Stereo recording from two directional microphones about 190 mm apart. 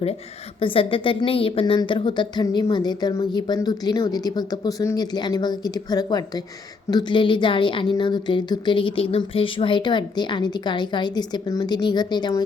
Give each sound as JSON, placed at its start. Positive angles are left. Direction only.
{"t": 0.6, "sound": "a woman's voice", "side_deg": 30}